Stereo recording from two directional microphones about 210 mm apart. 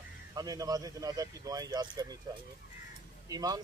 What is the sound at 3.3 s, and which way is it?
Speech, 20° right (ahead or behind).